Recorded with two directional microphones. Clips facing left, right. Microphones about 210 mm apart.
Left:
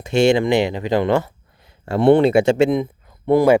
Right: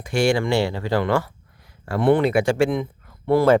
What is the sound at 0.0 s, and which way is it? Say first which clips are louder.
Speech: left 5 dB; 25° left (ahead or behind).